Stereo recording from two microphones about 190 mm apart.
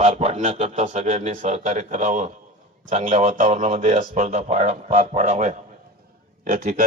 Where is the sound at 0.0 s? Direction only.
35° right (ahead or behind).